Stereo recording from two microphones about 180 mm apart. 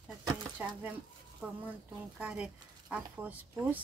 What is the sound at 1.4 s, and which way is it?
Speech, 10° right (ahead or behind).